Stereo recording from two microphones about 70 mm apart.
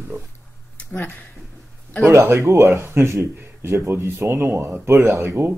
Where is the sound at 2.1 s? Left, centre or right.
Right.